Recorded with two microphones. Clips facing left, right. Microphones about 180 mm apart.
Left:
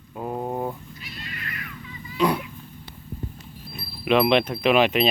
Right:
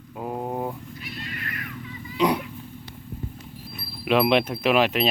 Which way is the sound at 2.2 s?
20° right (ahead or behind).